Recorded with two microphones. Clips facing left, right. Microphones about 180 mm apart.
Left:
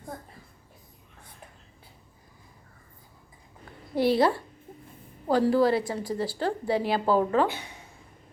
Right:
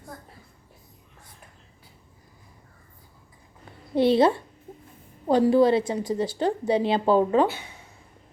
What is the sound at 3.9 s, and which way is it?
A woman's voice, 20° right (ahead or behind).